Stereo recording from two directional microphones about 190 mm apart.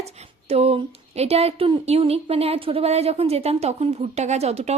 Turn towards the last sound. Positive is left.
turn(degrees=-35)  # may be behind; listen again after turning